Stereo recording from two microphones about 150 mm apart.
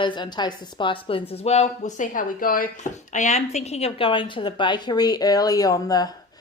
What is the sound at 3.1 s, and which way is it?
A woman's voice, 55° left (ahead or behind).